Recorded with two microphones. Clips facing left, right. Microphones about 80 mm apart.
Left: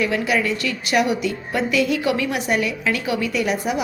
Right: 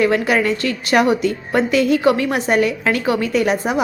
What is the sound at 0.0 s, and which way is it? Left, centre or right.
A woman's voice, right.